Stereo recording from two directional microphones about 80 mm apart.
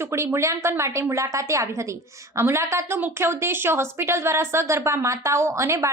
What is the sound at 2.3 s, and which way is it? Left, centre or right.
A woman's voice, right.